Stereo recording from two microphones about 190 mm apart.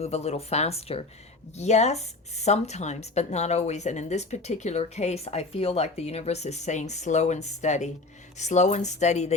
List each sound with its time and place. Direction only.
0.0 s speech: 35° left (ahead or behind)